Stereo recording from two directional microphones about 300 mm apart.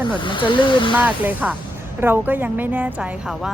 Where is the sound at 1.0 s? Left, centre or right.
Centre.